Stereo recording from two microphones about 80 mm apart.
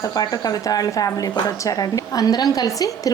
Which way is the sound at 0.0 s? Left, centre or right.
Left.